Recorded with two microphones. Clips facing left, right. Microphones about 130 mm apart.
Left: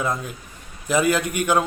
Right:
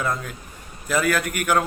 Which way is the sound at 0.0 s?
20° left (ahead or behind).